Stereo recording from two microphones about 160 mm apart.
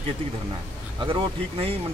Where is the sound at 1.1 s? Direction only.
30° right (ahead or behind).